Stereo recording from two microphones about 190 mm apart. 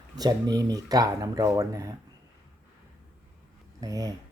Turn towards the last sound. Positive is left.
turn(degrees=-20)  # may be behind; listen again after turning